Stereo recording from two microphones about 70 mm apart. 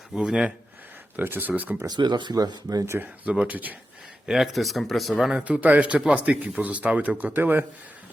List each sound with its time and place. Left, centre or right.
0.2 s speech: centre
1.1 s speech: right
1.9 s speech: right
3.0 s speech: centre
4.3 s speech: centre
5.3 s speech: right